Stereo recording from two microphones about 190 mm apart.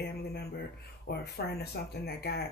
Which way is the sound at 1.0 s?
60° left (ahead or behind).